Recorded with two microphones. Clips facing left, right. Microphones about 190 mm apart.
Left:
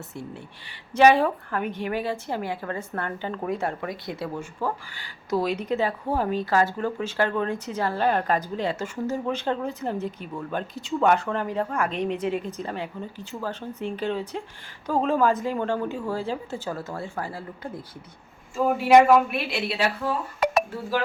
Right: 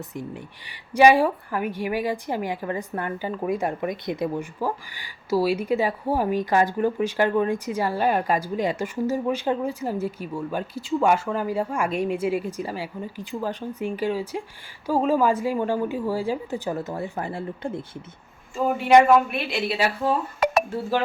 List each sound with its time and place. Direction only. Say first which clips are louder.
0.1 s a woman's voice: right 3 dB; 15° right (ahead or behind)
18.5 s speech: even; centre (ahead or behind)